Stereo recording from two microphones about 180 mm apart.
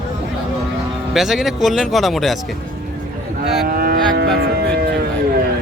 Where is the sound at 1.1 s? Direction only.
Centre (ahead or behind).